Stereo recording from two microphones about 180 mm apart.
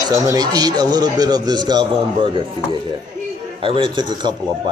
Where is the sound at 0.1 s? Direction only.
20° right (ahead or behind).